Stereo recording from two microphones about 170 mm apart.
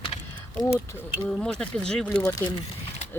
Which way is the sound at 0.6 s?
15° left (ahead or behind).